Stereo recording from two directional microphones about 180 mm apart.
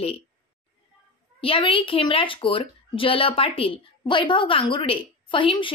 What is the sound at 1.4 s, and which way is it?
A woman's voice, 30° left (ahead or behind).